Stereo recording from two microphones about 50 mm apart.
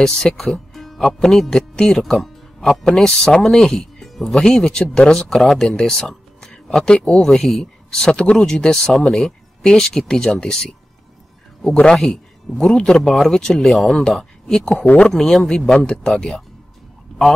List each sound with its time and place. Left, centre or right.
0.4 s speech: centre
5.4 s speech: centre
5.7 s speech: centre
12.0 s a man's voice: centre
13.7 s speech: centre